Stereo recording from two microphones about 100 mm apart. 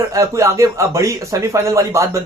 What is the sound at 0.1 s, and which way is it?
Speech, 30° right (ahead or behind).